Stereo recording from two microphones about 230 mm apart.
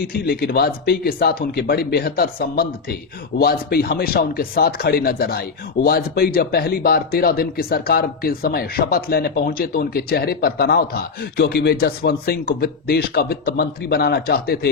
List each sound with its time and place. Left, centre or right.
0.0 s speech: left